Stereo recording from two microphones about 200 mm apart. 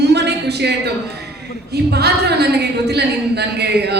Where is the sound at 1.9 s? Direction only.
55° right (ahead or behind).